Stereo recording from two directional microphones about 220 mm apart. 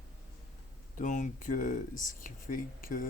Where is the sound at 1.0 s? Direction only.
35° left (ahead or behind).